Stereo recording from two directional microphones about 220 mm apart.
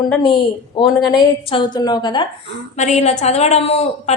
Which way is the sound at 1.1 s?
20° left (ahead or behind).